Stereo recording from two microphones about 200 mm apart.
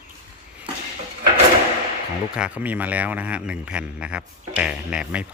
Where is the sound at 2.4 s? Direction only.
5° right (ahead or behind).